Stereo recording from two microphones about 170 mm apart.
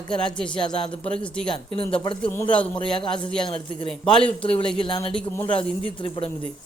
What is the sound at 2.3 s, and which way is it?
A man's voice, 10° left (ahead or behind).